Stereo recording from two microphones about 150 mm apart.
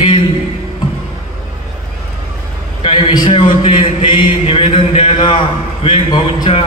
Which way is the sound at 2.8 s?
35° left (ahead or behind).